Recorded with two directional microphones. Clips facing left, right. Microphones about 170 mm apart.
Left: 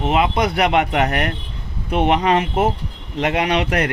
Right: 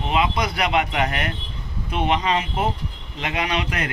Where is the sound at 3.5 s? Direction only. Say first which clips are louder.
Left 6 dB; 60° left (ahead or behind).